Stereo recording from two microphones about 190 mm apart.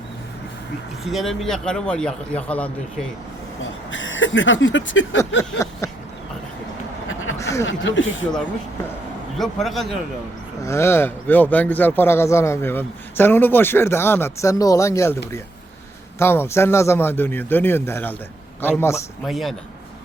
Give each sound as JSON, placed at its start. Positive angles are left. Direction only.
{"t": 1.0, "sound": "a man's voice", "side_deg": 0}
{"t": 3.9, "sound": "a sound", "side_deg": 85}
{"t": 5.6, "sound": "speech", "side_deg": 15}
{"t": 7.3, "sound": "a sound", "side_deg": 15}
{"t": 7.7, "sound": "speech", "side_deg": 80}
{"t": 9.4, "sound": "a man's voice", "side_deg": 0}
{"t": 10.6, "sound": "speech", "side_deg": 15}
{"t": 16.1, "sound": "speech", "side_deg": 10}
{"t": 19.2, "sound": "a man's voice", "side_deg": 0}